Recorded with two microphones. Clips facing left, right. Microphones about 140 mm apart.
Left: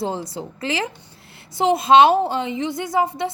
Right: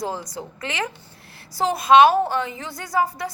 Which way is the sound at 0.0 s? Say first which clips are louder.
Left 3 dB; 30° left (ahead or behind).